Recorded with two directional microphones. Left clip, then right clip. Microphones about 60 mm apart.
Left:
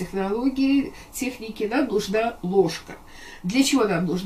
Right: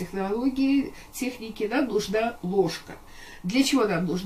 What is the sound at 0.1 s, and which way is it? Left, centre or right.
Speech, right.